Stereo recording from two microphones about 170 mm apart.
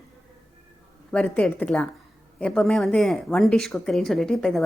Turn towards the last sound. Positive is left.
turn(degrees=5)  # may be behind; listen again after turning